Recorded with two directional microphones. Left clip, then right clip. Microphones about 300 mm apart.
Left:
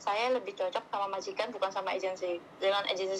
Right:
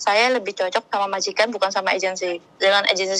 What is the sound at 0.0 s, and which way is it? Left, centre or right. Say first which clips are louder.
Speech: right 12 dB; right.